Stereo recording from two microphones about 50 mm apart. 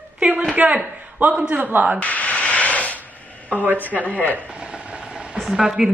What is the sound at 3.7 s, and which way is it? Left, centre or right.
Speech, left.